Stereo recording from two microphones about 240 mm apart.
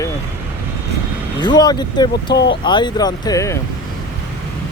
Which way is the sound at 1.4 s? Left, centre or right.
Centre.